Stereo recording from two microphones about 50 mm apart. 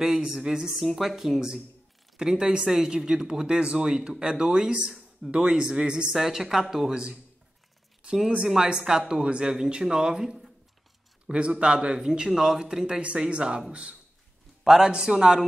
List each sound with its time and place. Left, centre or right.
0.0 s speech: centre
0.7 s speech: centre
6.9 s speech: centre
8.5 s speech: centre
12.0 s speech: centre
14.6 s a man's voice: centre